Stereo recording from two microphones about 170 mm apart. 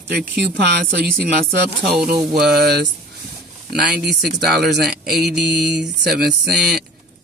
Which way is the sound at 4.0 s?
Centre (ahead or behind).